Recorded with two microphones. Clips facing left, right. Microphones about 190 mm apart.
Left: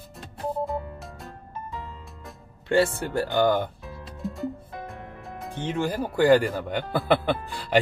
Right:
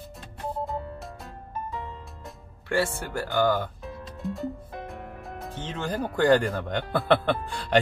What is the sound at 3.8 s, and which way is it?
Music, centre (ahead or behind).